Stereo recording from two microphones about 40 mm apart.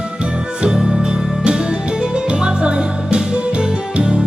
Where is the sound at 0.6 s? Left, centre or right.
Centre.